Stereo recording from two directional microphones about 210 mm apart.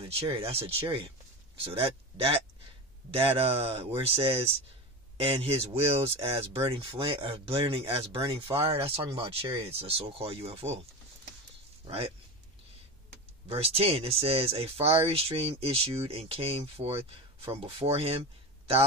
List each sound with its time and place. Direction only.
0.7 s speech: 25° right (ahead or behind)
13.5 s speech: 30° right (ahead or behind)